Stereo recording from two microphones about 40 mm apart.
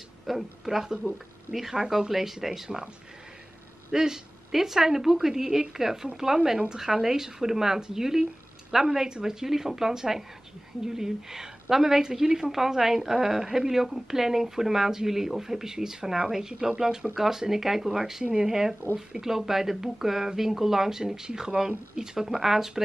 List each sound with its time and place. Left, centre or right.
0.3 s a woman's voice: centre
3.9 s a woman's voice: centre